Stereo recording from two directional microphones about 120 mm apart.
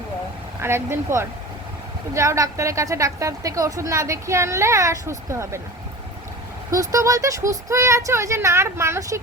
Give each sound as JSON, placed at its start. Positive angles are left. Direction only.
{"t": 0.6, "sound": "a woman's voice", "side_deg": -20}
{"t": 6.7, "sound": "a woman's voice", "side_deg": -25}